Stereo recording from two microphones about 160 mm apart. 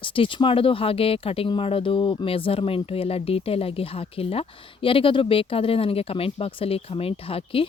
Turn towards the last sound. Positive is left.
turn(degrees=35)  # may be behind; listen again after turning